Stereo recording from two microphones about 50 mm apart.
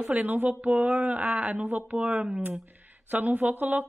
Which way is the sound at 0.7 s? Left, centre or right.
Right.